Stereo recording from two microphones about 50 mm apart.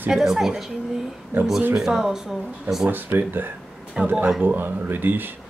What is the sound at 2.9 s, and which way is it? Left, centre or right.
Speech, right.